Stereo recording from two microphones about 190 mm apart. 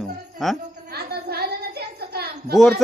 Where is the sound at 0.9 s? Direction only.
55° right (ahead or behind).